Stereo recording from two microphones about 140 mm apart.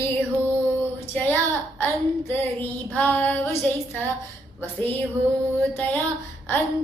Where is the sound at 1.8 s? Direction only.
15° left (ahead or behind).